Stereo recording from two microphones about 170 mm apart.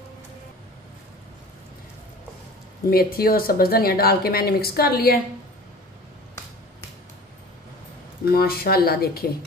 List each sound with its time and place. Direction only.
2.9 s speech: 60° left (ahead or behind)
8.3 s speech: 65° left (ahead or behind)